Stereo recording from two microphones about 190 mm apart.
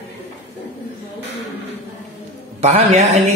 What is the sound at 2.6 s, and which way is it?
Speech, 35° right (ahead or behind).